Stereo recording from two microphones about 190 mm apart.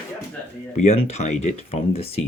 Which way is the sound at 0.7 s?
35° left (ahead or behind).